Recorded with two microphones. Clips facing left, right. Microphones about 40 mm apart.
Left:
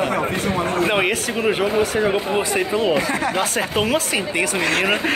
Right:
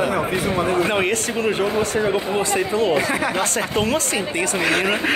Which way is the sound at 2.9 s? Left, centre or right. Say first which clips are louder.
Even; centre.